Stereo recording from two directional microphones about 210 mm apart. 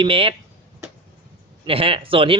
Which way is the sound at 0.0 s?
25° right (ahead or behind).